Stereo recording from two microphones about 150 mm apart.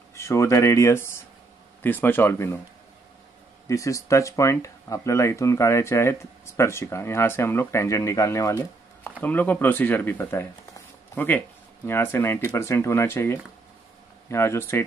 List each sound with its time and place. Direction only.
0.1 s speech: 20° left (ahead or behind)
3.6 s speech: 20° left (ahead or behind)